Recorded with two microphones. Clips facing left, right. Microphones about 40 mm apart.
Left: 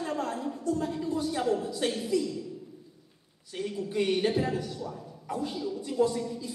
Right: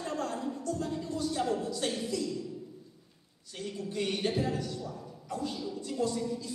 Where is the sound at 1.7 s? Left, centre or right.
Centre.